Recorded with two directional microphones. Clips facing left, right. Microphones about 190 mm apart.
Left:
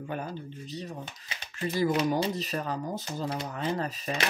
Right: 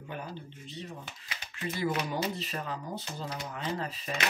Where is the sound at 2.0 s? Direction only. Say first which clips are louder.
Left 6 dB; 30° left (ahead or behind).